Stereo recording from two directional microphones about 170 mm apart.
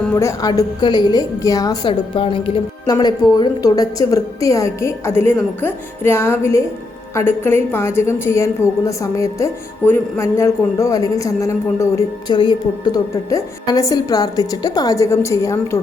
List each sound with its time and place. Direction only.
0.2 s a woman's voice: 20° left (ahead or behind)